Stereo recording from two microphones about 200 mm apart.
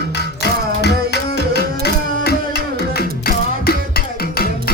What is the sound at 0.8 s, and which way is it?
Tabla, 55° left (ahead or behind).